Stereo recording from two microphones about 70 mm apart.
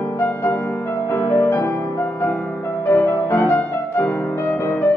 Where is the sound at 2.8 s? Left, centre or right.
Left.